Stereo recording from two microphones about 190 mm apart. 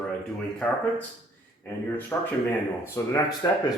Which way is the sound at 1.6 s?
10° left (ahead or behind).